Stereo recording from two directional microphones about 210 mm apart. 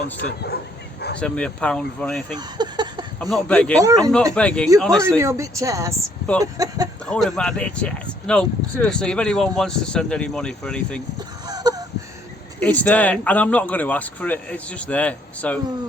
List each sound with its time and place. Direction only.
0.2 s speech: 50° left (ahead or behind)
1.2 s speech: 5° left (ahead or behind)
2.3 s a sound: 20° right (ahead or behind)
3.2 s speech: 5° left (ahead or behind)
3.8 s speech: 15° right (ahead or behind)
4.4 s speech: 5° left (ahead or behind)
5.2 s speech: 15° right (ahead or behind)
7.0 s speech: centre (ahead or behind)
11.4 s a sound: 20° right (ahead or behind)
12.5 s speech: 5° left (ahead or behind)